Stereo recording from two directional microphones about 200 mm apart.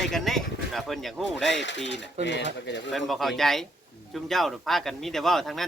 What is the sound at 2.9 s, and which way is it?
Speech, centre (ahead or behind).